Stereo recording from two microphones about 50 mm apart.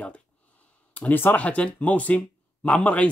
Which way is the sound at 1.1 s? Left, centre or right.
Left.